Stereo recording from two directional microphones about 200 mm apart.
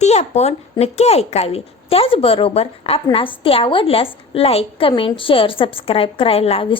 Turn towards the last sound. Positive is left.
turn(degrees=30)  # may be behind; listen again after turning